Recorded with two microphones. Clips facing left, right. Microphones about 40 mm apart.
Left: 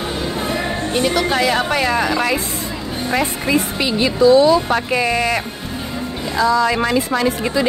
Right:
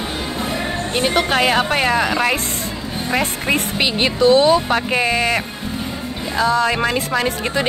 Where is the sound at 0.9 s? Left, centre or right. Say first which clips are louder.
Even; right.